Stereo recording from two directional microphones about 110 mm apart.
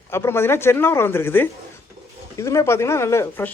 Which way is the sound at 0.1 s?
20° left (ahead or behind).